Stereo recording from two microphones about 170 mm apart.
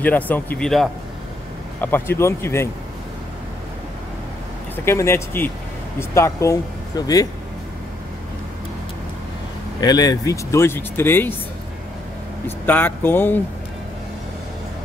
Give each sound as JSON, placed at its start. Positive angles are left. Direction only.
{"t": 0.0, "sound": "speech", "side_deg": 10}
{"t": 4.8, "sound": "speech", "side_deg": 15}
{"t": 9.8, "sound": "speech", "side_deg": 25}
{"t": 12.4, "sound": "speech", "side_deg": 10}